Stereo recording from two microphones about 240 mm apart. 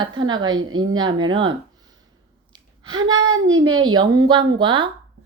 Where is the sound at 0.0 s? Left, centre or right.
Centre.